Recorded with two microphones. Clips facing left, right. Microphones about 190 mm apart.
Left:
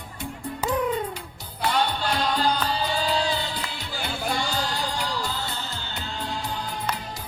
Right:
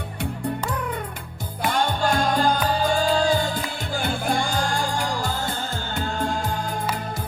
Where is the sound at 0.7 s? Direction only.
20° left (ahead or behind).